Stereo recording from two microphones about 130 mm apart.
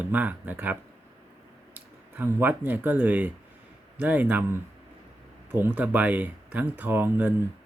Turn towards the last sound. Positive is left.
turn(degrees=-15)  # may be behind; listen again after turning